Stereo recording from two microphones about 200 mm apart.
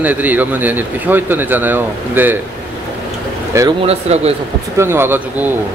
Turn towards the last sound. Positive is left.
turn(degrees=-10)  # may be behind; listen again after turning